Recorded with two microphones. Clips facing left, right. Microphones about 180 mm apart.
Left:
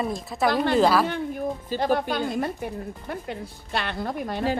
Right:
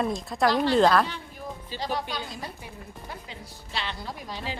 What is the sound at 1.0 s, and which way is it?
A woman's voice, 55° left (ahead or behind).